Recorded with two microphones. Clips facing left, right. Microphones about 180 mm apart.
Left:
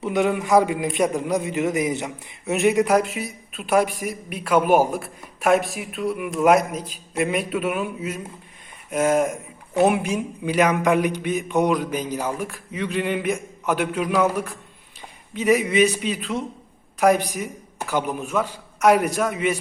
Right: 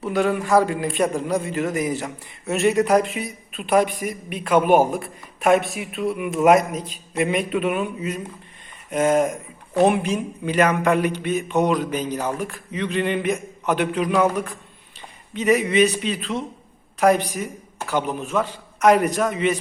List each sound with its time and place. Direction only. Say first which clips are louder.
0.0 s a man's voice: even; 20° left (ahead or behind)